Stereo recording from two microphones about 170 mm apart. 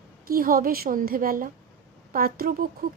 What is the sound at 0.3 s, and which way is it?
Speech, 60° right (ahead or behind).